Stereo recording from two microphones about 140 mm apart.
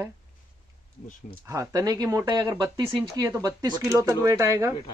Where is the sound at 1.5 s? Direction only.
25° right (ahead or behind).